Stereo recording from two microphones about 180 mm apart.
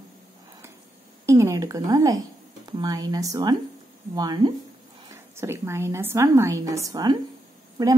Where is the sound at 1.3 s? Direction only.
15° right (ahead or behind).